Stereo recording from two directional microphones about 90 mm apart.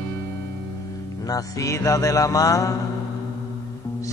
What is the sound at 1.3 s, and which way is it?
Music, 40° left (ahead or behind).